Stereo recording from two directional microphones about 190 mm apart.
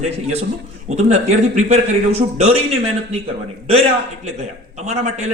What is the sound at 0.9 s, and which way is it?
A man's voice, 35° right (ahead or behind).